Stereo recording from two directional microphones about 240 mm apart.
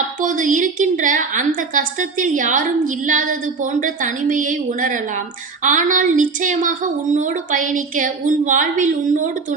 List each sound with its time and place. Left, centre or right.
0.2 s a woman's voice: right